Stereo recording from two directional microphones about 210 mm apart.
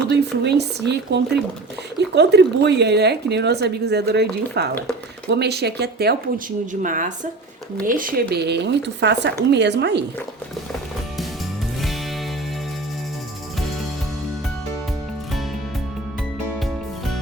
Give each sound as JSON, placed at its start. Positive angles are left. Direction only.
{"t": 0.1, "sound": "speech", "side_deg": -50}
{"t": 6.8, "sound": "speech", "side_deg": -40}